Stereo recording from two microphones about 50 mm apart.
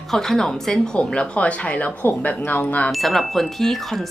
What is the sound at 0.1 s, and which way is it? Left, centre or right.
Speech, centre.